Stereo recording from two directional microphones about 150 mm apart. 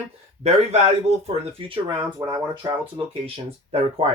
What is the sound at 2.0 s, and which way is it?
Speech, 25° right (ahead or behind).